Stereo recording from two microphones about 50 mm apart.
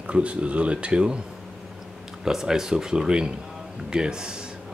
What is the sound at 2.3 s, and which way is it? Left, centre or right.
Speech, centre.